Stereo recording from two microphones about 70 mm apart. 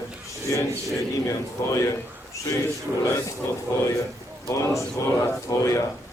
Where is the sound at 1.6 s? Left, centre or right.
Left.